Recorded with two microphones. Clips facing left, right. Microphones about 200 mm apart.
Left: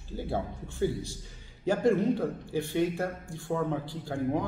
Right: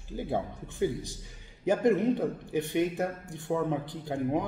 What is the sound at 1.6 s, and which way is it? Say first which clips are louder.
A man's voice: right 1 dB; 20° right (ahead or behind).